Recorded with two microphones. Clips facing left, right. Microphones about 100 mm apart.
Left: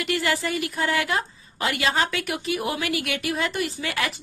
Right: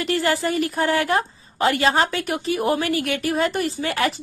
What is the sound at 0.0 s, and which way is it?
Speech, 35° right (ahead or behind).